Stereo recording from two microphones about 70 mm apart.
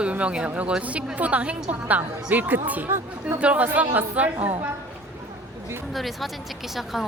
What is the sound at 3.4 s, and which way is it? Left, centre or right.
A woman's voice, centre.